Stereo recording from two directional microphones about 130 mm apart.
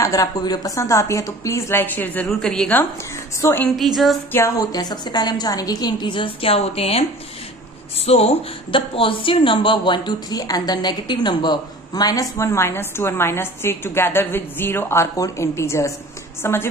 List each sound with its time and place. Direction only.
0.0 s a woman's voice: 25° left (ahead or behind); by 2.8 s 5° left (ahead or behind)
3.3 s a woman's voice: 25° left (ahead or behind)
3.6 s a woman's voice: centre (ahead or behind)
4.3 s a woman's voice: 20° left (ahead or behind)
4.7 s a woman's voice: 30° left (ahead or behind)